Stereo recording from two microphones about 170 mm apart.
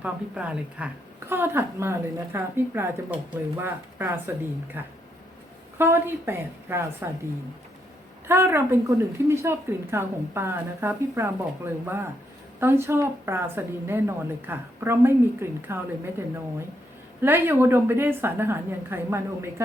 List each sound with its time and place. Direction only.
0.0 s a woman's voice: 5° right (ahead or behind)
5.7 s a woman's voice: 15° right (ahead or behind)
8.3 s a woman's voice: 15° right (ahead or behind)